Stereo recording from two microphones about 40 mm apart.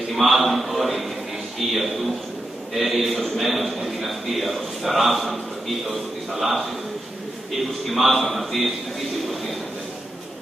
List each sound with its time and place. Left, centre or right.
0.1 s a man's voice: centre
7.8 s a man's voice: centre